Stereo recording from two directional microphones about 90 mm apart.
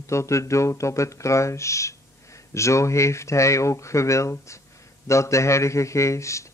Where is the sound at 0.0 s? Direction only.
35° left (ahead or behind).